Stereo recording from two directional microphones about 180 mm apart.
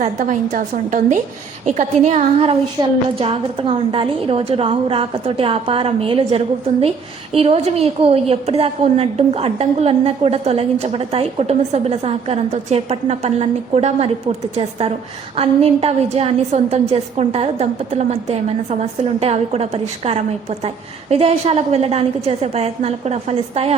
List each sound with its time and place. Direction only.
0.0 s a woman's voice: 45° right (ahead or behind)
2.8 s a woman's voice: 20° right (ahead or behind)
3.2 s a woman's voice: 30° right (ahead or behind)